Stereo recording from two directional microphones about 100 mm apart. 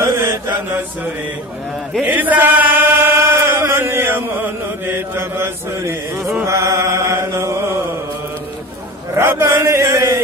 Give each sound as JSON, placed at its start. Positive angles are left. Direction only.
{"t": 0.0, "sound": "mantra", "side_deg": -30}
{"t": 2.0, "sound": "chant", "side_deg": -15}
{"t": 9.1, "sound": "chant", "side_deg": -25}